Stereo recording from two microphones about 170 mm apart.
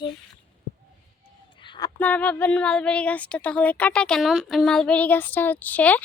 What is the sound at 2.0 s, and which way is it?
Speech, 10° left (ahead or behind).